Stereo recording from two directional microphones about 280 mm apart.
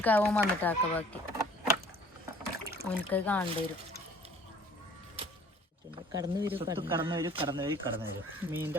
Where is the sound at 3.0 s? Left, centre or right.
Centre.